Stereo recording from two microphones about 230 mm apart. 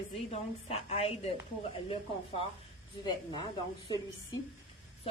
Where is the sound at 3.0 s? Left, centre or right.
Centre.